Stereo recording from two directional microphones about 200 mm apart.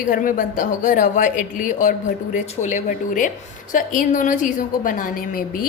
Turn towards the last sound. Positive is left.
turn(degrees=45)  # may be behind; listen again after turning